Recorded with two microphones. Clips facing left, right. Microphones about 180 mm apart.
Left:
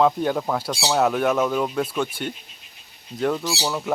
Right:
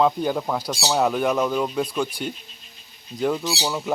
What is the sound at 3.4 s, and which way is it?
Speech, 15° right (ahead or behind).